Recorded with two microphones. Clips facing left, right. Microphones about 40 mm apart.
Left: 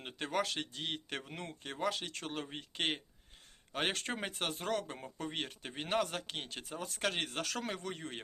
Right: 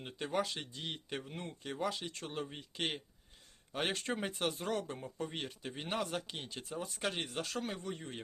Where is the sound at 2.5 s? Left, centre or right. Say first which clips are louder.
Left 2 dB; left.